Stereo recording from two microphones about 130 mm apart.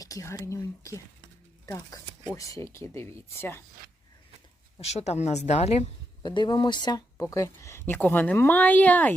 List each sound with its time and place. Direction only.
0.0 s speech: 25° left (ahead or behind)
4.8 s a woman's voice: 55° left (ahead or behind)
6.2 s speech: 35° left (ahead or behind); by 9.1 s 10° left (ahead or behind)